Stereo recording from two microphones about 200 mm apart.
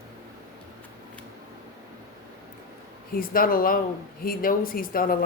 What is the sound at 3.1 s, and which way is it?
Speech, 45° left (ahead or behind).